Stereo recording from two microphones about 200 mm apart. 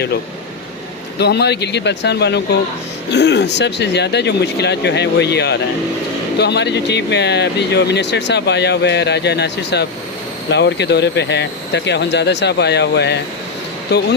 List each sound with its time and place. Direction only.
1.2 s speech: 55° left (ahead or behind)